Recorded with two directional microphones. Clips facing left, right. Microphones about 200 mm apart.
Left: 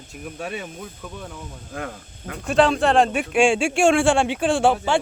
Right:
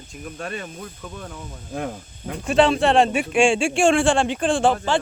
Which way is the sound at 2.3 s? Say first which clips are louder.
Right 1 dB; centre (ahead or behind).